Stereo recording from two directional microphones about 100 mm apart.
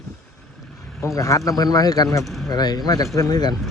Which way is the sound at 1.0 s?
30° left (ahead or behind).